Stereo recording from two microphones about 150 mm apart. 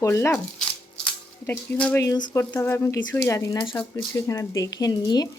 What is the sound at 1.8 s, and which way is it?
Speech, 10° left (ahead or behind).